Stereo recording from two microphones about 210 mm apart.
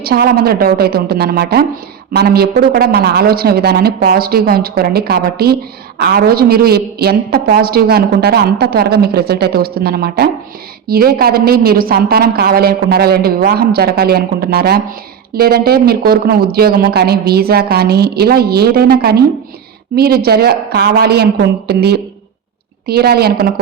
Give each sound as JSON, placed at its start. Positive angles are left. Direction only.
{"t": 0.0, "sound": "a woman's voice", "side_deg": -45}